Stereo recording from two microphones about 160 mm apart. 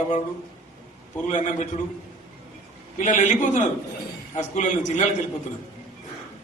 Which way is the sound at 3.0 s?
50° left (ahead or behind).